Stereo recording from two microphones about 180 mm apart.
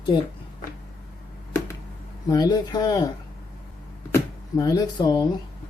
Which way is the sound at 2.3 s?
20° left (ahead or behind).